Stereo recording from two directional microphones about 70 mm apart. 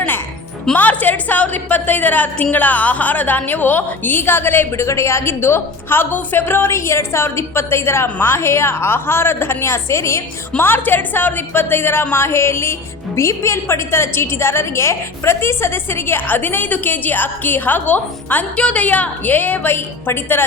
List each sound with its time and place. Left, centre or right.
0.7 s a woman's voice: left
10.6 s a woman's voice: left